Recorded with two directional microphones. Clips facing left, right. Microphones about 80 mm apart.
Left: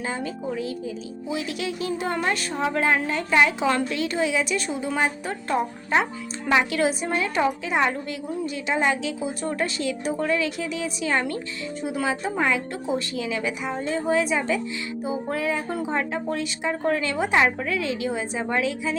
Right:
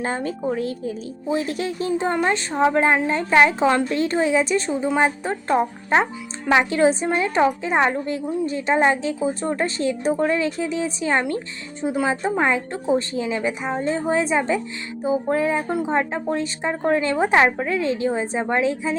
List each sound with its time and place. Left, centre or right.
0.0 s a woman's voice: right
1.9 s a woman's voice: right